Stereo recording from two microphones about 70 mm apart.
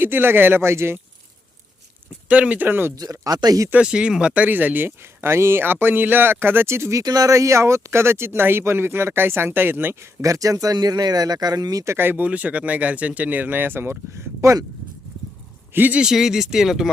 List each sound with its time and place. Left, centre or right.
0.0 s speech: right
2.2 s speech: centre
2.9 s speech: right
3.7 s speech: centre; by 7.0 s right
7.0 s speech: right
10.8 s speech: right
11.9 s speech: right
15.7 s speech: right
16.0 s speech: centre